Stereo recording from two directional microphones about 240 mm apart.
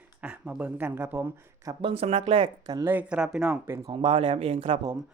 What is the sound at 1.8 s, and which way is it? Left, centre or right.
Speech, right.